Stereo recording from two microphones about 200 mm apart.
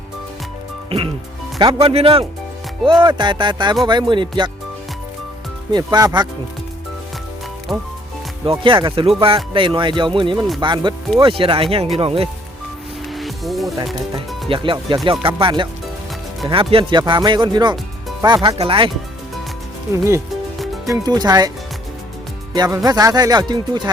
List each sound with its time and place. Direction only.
0.9 s speech: 25° right (ahead or behind)
5.7 s speech: 20° right (ahead or behind)
8.4 s speech: 25° right (ahead or behind)
10.3 s speech: centre (ahead or behind)
10.6 s speech: 25° right (ahead or behind)
13.1 s music: centre (ahead or behind)
14.5 s speech: 25° right (ahead or behind)
19.9 s speech: 15° right (ahead or behind)
22.5 s speech: 20° right (ahead or behind)